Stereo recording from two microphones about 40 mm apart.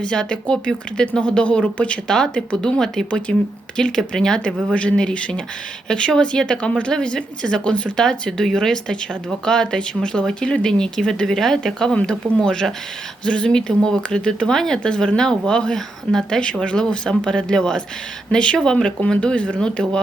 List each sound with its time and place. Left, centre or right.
0.0 s a woman's voice: left
2.0 s speech: centre
3.1 s speech: left
3.8 s speech: centre
4.7 s a woman's voice: left; by 16.4 s centre
16.4 s a woman's voice: left